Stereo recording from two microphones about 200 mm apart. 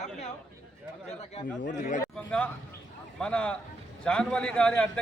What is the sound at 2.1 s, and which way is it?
A man's voice, 5° left (ahead or behind).